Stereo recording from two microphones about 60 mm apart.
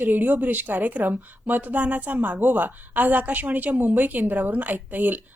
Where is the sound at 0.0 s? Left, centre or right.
Right.